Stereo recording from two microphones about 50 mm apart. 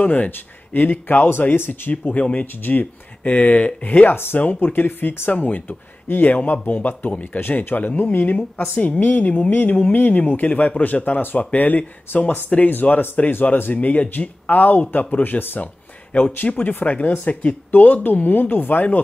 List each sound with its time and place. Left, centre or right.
0.0 s a man's voice: left
1.5 s a man's voice: left
4.1 s a man's voice: left
16.1 s speech: left
16.3 s a man's voice: left